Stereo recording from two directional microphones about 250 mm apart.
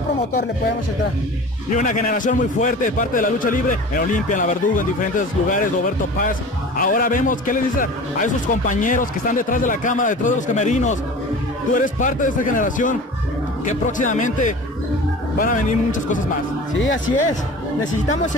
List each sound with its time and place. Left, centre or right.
1.7 s a man's voice: left
6.8 s a man's voice: left